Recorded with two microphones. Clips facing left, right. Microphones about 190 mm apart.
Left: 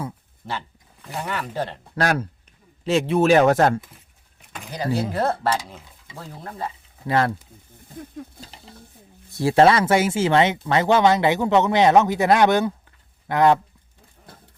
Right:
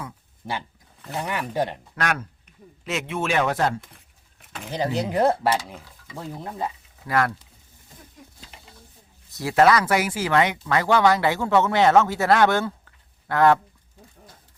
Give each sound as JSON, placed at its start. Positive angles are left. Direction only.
{"t": 0.4, "sound": "speech", "side_deg": -15}
{"t": 1.0, "sound": "speech", "side_deg": 0}
{"t": 1.3, "sound": "speech", "side_deg": -15}
{"t": 2.0, "sound": "speech", "side_deg": 35}
{"t": 4.4, "sound": "a sound", "side_deg": 0}
{"t": 4.7, "sound": "speech", "side_deg": -20}
{"t": 7.1, "sound": "speech", "side_deg": 25}
{"t": 8.5, "sound": "stir", "side_deg": 30}
{"t": 9.3, "sound": "speech", "side_deg": 30}